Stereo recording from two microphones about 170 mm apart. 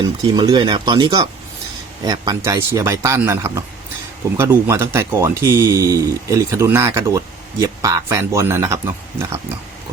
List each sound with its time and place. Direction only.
0.2 s speech: 25° right (ahead or behind)